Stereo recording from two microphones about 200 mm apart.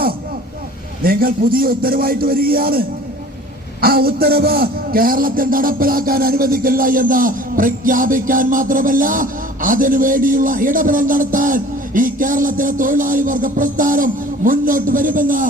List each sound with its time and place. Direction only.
1.0 s a man's voice: 45° right (ahead or behind)